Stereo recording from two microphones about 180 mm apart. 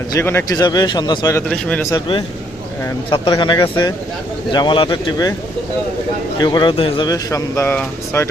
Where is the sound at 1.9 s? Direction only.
25° left (ahead or behind).